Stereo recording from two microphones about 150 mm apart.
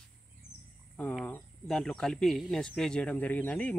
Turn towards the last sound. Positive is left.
turn(degrees=10)  # may be behind; listen again after turning